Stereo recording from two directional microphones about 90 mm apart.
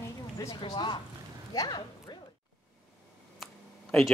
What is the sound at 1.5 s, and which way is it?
Speech, 50° left (ahead or behind).